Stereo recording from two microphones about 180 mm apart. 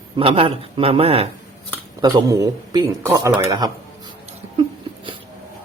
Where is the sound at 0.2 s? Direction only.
30° right (ahead or behind).